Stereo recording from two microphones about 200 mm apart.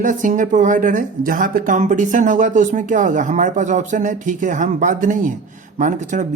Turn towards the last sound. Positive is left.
turn(degrees=-40)  # may be behind; listen again after turning